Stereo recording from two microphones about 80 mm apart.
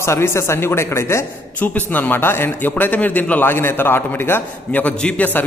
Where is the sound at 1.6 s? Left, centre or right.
Left.